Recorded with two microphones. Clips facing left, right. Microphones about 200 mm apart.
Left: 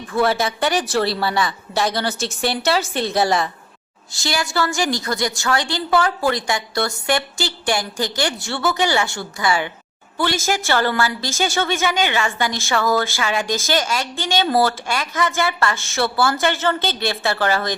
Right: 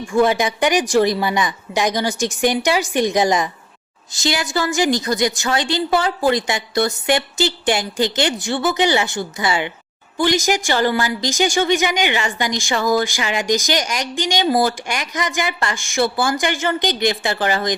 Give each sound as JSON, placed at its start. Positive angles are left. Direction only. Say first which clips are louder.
{"t": 0.0, "sound": "a woman's voice", "louder": "right 3 dB", "side_deg": -15}